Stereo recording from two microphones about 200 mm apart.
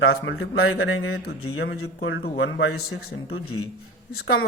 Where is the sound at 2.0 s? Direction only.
60° left (ahead or behind).